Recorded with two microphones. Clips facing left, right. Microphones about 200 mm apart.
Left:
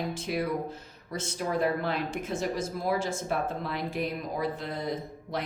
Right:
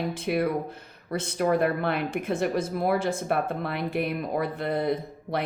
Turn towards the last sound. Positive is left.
turn(degrees=-60)  # may be behind; listen again after turning